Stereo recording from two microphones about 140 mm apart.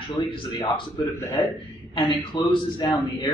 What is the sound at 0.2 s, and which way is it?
Speech, 35° left (ahead or behind).